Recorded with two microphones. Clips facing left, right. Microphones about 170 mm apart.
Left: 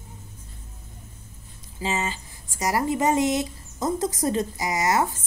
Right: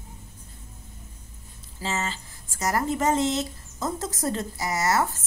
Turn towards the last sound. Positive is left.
turn(degrees=15)  # may be behind; listen again after turning